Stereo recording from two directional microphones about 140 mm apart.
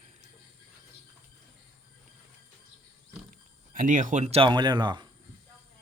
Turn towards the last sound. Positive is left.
turn(degrees=-35)  # may be behind; listen again after turning